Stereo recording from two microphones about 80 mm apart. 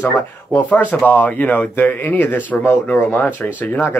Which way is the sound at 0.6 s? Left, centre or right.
Left.